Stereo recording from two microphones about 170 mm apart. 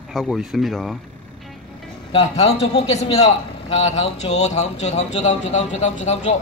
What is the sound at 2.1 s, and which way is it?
A man's voice, 35° left (ahead or behind).